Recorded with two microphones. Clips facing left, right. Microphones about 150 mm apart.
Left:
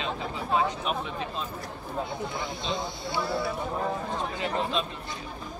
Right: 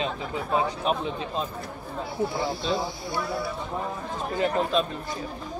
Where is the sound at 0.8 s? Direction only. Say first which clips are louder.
Right 4 dB; 35° right (ahead or behind).